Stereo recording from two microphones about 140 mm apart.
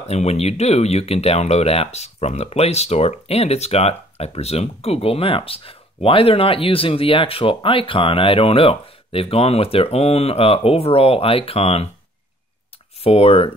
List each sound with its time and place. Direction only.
0.0 s speech: 50° left (ahead or behind)
13.0 s speech: 45° left (ahead or behind)